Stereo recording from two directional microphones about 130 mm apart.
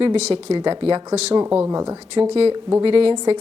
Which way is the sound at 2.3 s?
45° right (ahead or behind).